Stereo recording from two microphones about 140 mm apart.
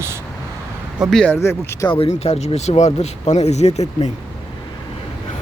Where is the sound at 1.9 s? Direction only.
45° left (ahead or behind).